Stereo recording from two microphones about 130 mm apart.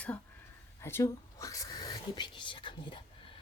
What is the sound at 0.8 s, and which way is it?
Speech, 20° left (ahead or behind).